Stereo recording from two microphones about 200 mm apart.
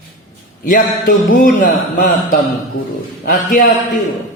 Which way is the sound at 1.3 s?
40° left (ahead or behind).